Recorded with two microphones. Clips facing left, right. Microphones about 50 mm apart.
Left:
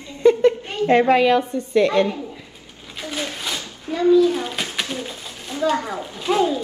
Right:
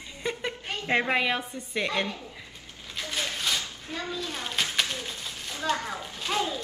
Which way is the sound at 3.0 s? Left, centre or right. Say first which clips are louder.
Left 4 dB; centre.